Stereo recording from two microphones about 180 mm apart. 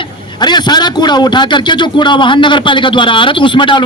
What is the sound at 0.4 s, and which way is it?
A man's voice, 25° left (ahead or behind).